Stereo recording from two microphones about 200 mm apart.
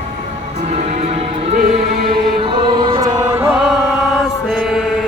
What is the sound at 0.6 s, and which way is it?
Music, 35° right (ahead or behind).